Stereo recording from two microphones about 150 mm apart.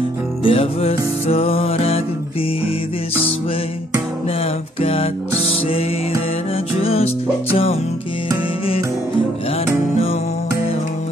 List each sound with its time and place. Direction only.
0.4 s music: 40° left (ahead or behind)
4.8 s music: 40° left (ahead or behind)